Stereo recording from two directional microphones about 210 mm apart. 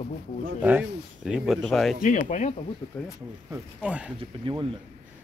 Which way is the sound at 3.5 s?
5° right (ahead or behind).